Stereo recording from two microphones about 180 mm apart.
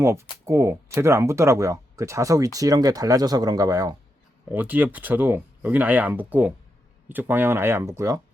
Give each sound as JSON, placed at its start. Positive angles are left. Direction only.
{"t": 0.0, "sound": "speech", "side_deg": -15}